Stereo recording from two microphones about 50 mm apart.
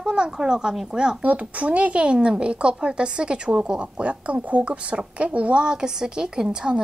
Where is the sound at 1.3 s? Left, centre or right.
Right.